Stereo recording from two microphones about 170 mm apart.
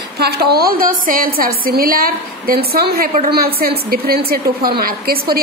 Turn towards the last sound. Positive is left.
turn(degrees=-60)  # may be behind; listen again after turning